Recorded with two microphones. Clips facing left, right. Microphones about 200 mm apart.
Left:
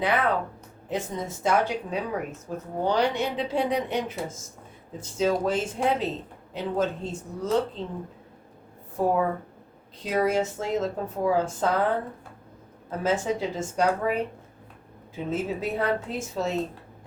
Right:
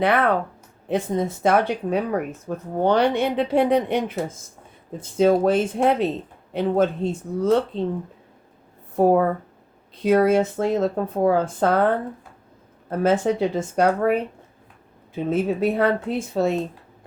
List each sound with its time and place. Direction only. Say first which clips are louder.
0.0 s speech: right 5 dB; 60° right (ahead or behind)
9.0 s speech: right 7 dB; 65° right (ahead or behind)
12.9 s speech: right 6 dB; 55° right (ahead or behind)